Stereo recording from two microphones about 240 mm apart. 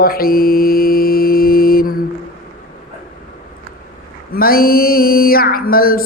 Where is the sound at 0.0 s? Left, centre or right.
Left.